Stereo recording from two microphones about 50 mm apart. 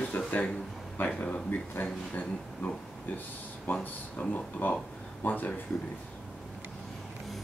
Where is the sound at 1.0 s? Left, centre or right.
Left.